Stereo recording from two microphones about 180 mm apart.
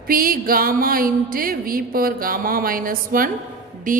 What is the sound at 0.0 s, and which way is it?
Speech, 55° right (ahead or behind).